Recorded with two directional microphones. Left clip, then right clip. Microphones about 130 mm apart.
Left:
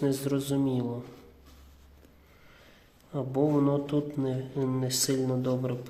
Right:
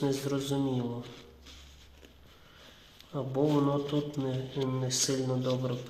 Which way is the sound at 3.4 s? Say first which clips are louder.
Left 2 dB; 20° left (ahead or behind).